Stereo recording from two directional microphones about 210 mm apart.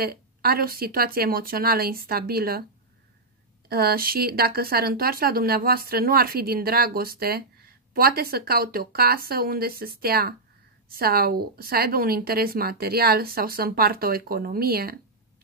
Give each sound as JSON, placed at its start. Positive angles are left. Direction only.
{"t": 0.0, "sound": "speech", "side_deg": -50}
{"t": 3.6, "sound": "speech", "side_deg": -45}